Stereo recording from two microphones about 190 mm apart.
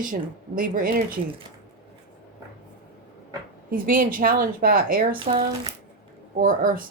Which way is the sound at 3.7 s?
50° right (ahead or behind).